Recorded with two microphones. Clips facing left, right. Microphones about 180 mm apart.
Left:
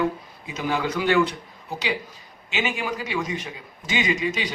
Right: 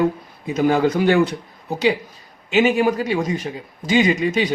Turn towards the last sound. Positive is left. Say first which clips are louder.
# right 8 dB
turn(degrees=-50)  # may be behind; listen again after turning